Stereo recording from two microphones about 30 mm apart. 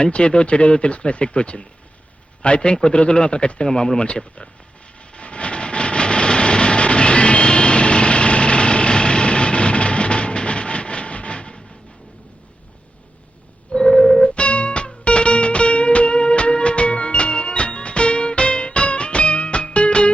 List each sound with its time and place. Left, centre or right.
0.0 s speech: left
3.7 s speech: left
3.9 s speech: left
5.1 s vehicle: left
13.7 s a sound: left
14.3 s music: left